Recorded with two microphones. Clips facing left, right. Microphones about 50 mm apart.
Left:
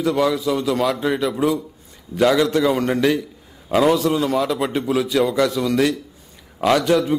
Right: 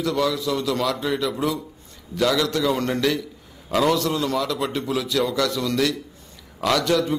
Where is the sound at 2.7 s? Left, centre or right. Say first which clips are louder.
Left 4 dB; centre.